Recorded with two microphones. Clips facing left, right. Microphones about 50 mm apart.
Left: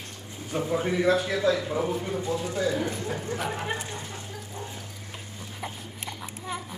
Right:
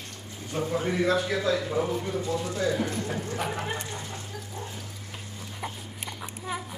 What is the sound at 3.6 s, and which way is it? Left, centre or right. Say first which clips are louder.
Speech: left 1 dB; centre.